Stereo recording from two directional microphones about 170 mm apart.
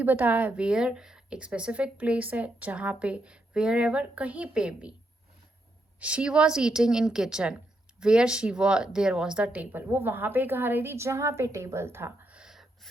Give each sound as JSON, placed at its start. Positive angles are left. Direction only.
{"t": 0.0, "sound": "a woman's voice", "side_deg": -10}
{"t": 6.0, "sound": "a woman's voice", "side_deg": -5}